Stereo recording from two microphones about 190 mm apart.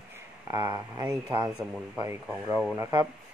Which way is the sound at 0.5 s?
20° right (ahead or behind).